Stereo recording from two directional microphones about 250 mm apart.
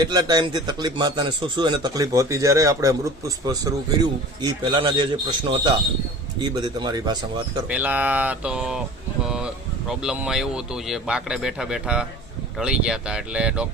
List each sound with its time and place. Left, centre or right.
0.0 s a man's voice: centre
7.7 s a man's voice: centre
10.0 s a man's voice: centre